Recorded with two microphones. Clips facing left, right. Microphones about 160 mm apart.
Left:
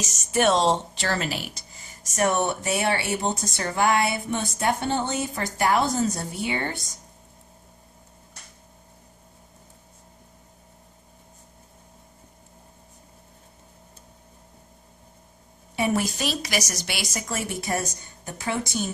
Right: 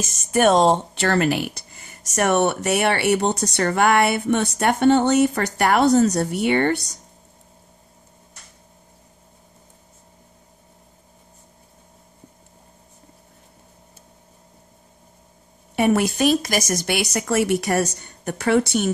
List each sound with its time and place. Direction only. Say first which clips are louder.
0.0 s speech: right 4 dB; 50° right (ahead or behind)
15.7 s speech: right 6 dB; 60° right (ahead or behind)